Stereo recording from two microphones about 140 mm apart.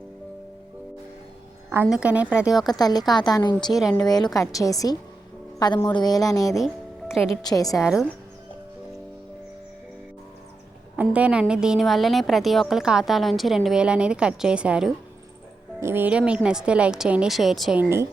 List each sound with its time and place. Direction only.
1.9 s a woman's voice: 10° right (ahead or behind)
2.6 s a woman's voice: 30° left (ahead or behind)
3.7 s a woman's voice: centre (ahead or behind)
4.0 s a woman's voice: 30° left (ahead or behind)
7.7 s a woman's voice: 5° right (ahead or behind)
10.9 s a woman's voice: 10° right (ahead or behind)
17.7 s speech: 20° right (ahead or behind)